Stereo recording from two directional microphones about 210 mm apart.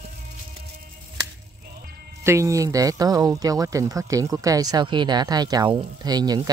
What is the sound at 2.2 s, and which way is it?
Speech, 15° right (ahead or behind).